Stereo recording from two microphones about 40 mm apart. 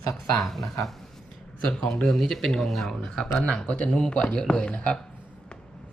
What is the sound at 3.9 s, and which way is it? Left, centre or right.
Speech, centre.